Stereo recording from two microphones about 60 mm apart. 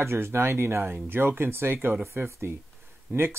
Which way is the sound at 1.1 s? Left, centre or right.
Right.